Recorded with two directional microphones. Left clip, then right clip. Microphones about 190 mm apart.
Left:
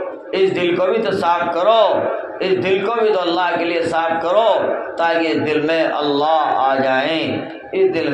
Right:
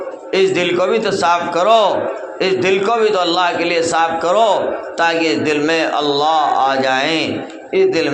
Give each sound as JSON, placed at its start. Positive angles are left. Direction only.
{"t": 0.3, "sound": "a man's voice", "side_deg": -20}